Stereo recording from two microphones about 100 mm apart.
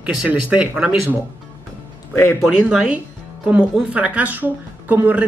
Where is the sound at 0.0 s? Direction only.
10° right (ahead or behind).